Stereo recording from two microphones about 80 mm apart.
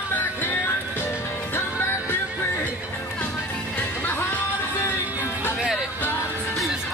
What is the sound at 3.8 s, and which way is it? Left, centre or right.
Music, left.